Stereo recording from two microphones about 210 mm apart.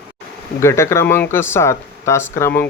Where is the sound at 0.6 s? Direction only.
15° left (ahead or behind).